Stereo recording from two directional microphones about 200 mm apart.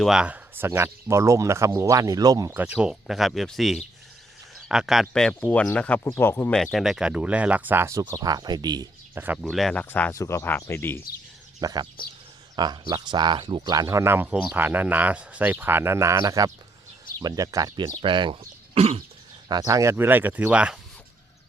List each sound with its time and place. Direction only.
0.0 s speech: 5° right (ahead or behind)
9.4 s speech: centre (ahead or behind)
11.6 s speech: 20° right (ahead or behind)
19.5 s speech: 20° right (ahead or behind)